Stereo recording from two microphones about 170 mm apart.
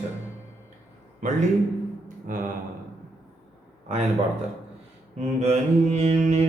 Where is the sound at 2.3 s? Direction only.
50° right (ahead or behind).